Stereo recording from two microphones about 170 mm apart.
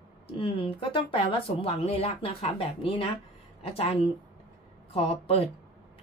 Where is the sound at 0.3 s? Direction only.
30° left (ahead or behind).